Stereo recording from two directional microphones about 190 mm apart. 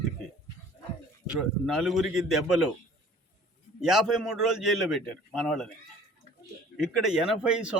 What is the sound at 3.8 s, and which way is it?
A man's voice, centre (ahead or behind).